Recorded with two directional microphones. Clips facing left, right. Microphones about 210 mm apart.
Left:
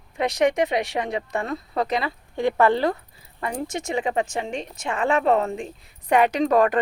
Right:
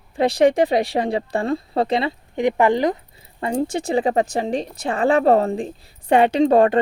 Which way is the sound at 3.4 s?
30° right (ahead or behind).